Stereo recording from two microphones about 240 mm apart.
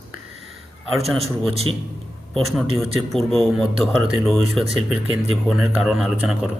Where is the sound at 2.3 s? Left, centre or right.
Centre.